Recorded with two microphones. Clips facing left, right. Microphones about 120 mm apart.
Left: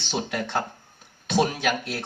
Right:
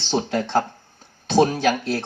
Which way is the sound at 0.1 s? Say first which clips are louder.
Right 6 dB; 30° right (ahead or behind).